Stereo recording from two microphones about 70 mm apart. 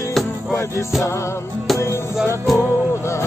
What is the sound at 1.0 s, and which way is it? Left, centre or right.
Music, left.